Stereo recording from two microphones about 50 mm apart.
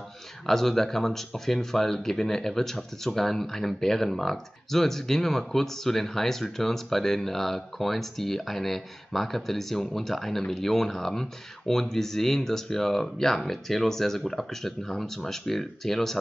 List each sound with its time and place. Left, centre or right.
0.5 s speech: centre